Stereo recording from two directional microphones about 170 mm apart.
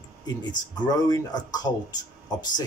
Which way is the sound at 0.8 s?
25° left (ahead or behind).